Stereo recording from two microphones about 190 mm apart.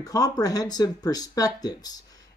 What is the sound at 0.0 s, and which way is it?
Speech, 20° left (ahead or behind).